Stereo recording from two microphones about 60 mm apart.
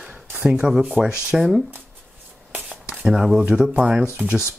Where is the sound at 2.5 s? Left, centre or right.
Right.